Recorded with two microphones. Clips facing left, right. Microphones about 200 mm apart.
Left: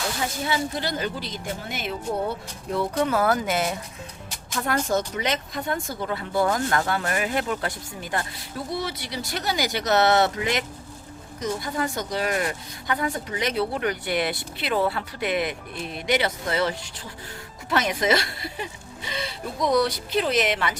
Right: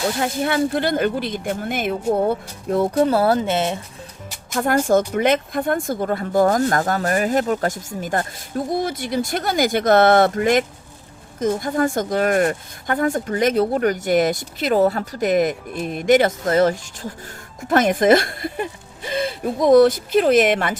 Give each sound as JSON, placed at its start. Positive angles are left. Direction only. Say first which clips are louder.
{"t": 0.2, "sound": "speech", "louder": "right 6 dB", "side_deg": -60}
{"t": 4.5, "sound": "speech", "louder": "right 7 dB", "side_deg": -50}